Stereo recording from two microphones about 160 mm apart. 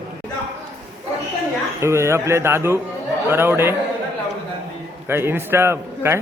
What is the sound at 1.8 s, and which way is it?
A man's voice, 15° right (ahead or behind).